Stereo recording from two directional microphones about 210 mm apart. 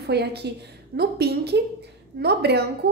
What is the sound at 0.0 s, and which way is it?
A woman's voice, 50° right (ahead or behind).